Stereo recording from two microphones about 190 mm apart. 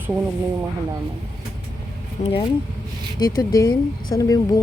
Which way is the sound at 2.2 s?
35° left (ahead or behind).